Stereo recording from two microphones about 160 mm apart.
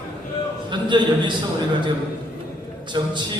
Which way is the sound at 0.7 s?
30° right (ahead or behind).